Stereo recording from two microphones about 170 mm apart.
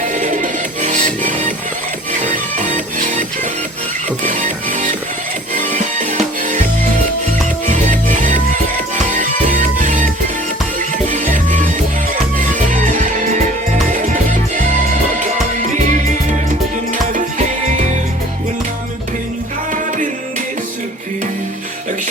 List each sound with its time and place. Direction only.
0.1 s music: 50° right (ahead or behind)
7.7 s music: 50° right (ahead or behind)
11.3 s music: 50° right (ahead or behind)